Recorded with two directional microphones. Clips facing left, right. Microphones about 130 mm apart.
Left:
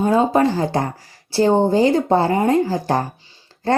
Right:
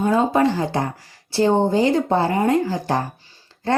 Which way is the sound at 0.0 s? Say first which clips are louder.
Left 2 dB; 35° left (ahead or behind).